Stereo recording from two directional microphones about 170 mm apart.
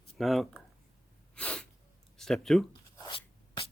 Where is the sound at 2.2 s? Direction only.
5° left (ahead or behind).